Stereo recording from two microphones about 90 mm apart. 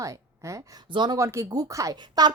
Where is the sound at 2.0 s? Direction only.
50° right (ahead or behind).